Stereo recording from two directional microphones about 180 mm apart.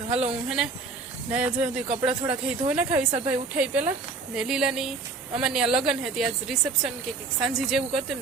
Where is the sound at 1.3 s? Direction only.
5° right (ahead or behind).